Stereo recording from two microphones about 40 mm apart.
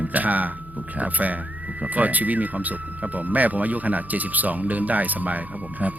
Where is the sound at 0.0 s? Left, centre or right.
Right.